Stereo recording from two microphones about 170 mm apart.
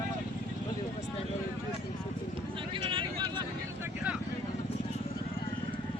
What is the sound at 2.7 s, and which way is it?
Vehicle, 30° right (ahead or behind).